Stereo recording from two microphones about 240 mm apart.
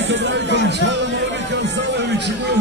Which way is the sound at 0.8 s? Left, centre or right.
Right.